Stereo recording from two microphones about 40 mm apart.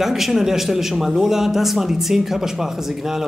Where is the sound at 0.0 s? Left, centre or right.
Centre.